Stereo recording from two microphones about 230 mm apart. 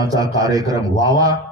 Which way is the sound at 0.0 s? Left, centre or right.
Centre.